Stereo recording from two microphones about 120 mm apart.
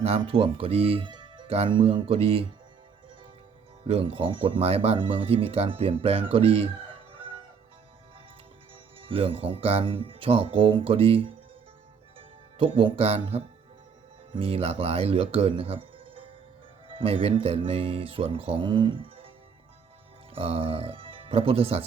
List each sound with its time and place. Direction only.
0.0 s speech: 55° right (ahead or behind)
1.5 s speech: 55° right (ahead or behind)
3.8 s speech: 50° right (ahead or behind)
7.1 s music: 45° right (ahead or behind)
9.0 s speech: 50° right (ahead or behind)
12.5 s speech: 45° right (ahead or behind)
20.3 s speech: 50° right (ahead or behind)